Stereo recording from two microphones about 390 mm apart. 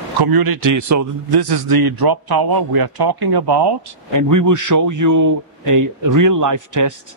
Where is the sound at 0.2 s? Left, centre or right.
Right.